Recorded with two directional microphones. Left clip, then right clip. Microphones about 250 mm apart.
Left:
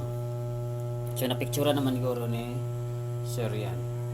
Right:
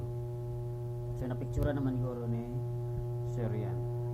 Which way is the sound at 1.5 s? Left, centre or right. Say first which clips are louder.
Left 9 dB; centre.